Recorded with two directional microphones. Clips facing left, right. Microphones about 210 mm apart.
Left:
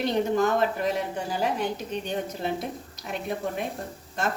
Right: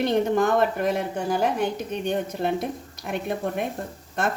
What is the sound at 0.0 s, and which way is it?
A woman's voice, 55° right (ahead or behind).